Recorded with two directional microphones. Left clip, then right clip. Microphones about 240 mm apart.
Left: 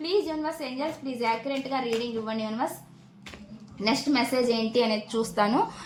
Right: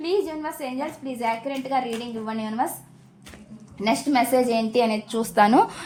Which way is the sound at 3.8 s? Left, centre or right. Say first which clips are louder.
Right 4 dB; right.